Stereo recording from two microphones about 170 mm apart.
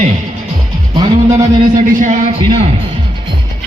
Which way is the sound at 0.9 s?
20° right (ahead or behind).